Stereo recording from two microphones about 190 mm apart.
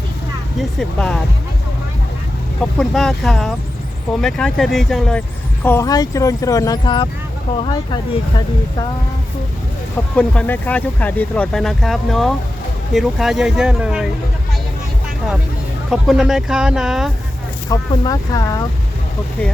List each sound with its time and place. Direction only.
0.8 s speech: 5° left (ahead or behind)
2.7 s speech: centre (ahead or behind)
5.6 s speech: 15° left (ahead or behind)
10.2 s speech: 5° left (ahead or behind)
15.9 s speech: centre (ahead or behind)
17.7 s speech: 20° left (ahead or behind)